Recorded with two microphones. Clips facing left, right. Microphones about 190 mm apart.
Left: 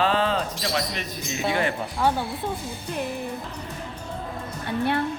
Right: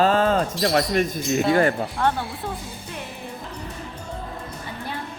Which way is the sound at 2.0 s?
5° left (ahead or behind).